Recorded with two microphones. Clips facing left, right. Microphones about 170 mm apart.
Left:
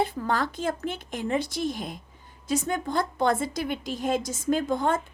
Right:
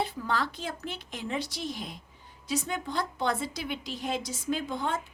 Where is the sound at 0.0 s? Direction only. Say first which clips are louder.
Left 4 dB; 50° left (ahead or behind).